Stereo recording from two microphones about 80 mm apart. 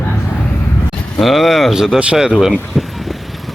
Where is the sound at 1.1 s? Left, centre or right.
Centre.